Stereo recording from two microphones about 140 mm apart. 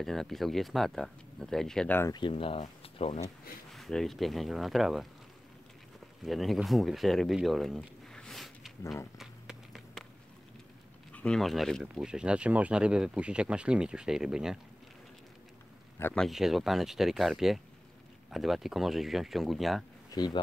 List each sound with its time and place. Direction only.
0.0 s speech: centre (ahead or behind)
2.1 s speech: 40° left (ahead or behind)
2.6 s speech: 50° left (ahead or behind)
3.7 s speech: centre (ahead or behind)
6.2 s speech: centre (ahead or behind)
9.2 s run: centre (ahead or behind)
11.1 s speech: 5° left (ahead or behind)
16.2 s speech: centre (ahead or behind)
20.1 s bee: 30° left (ahead or behind)